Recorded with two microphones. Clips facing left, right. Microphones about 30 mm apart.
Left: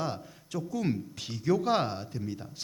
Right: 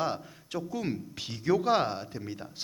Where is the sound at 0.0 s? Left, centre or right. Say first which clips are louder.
Right 3 dB; centre.